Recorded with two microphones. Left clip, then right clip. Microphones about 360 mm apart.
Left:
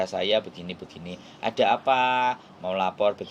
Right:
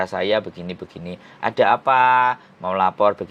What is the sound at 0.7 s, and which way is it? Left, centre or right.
Speech, right.